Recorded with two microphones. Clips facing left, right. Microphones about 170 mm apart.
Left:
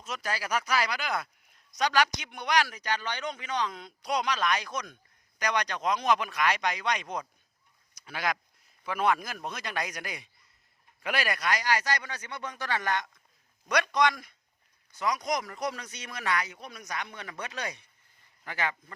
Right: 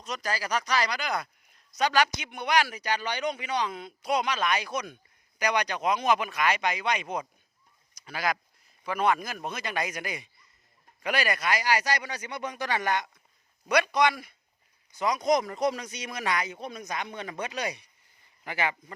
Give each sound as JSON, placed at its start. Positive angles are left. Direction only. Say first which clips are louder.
{"t": 0.0, "sound": "a man's voice", "louder": "right 2 dB", "side_deg": 5}
{"t": 14.9, "sound": "speech", "louder": "right 5 dB", "side_deg": -20}